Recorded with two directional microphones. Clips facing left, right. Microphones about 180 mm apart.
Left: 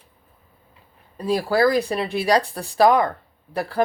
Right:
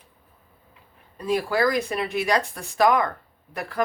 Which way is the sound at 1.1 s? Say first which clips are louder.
Left 3 dB; 35° left (ahead or behind).